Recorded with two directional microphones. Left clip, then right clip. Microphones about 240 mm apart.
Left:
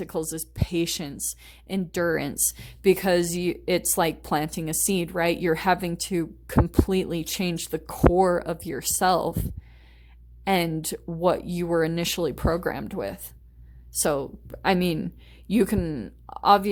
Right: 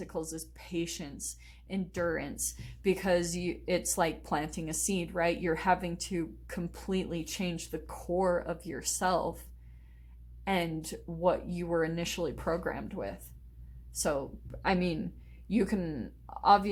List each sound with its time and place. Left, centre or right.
0.0 s a woman's voice: left
10.4 s a woman's voice: left